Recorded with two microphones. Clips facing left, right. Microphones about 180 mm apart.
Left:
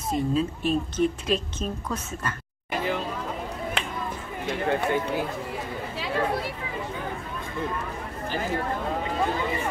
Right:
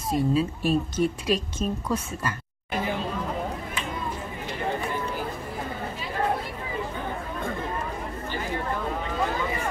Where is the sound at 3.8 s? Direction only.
70° left (ahead or behind).